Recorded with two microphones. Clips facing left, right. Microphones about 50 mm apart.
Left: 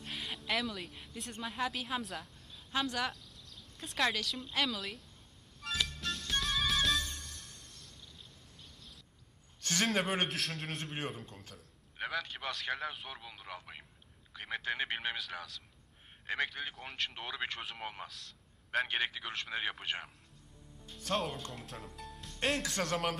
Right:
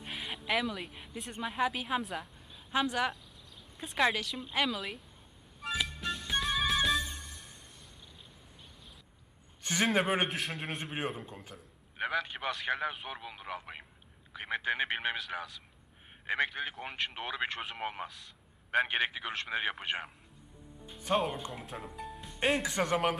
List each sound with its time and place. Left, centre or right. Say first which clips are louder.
0.0 s speech: right 2 dB; centre
5.6 s music: right 2 dB; centre
9.6 s a man's voice: right 3 dB; centre